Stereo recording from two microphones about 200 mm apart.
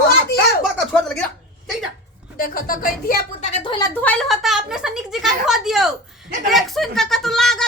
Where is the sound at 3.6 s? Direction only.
20° left (ahead or behind).